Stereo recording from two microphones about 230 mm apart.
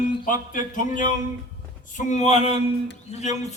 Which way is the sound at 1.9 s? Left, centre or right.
Left.